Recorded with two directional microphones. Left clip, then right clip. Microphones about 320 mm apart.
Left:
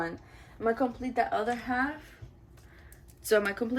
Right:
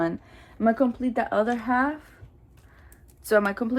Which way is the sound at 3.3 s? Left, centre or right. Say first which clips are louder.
Right 4 dB; centre.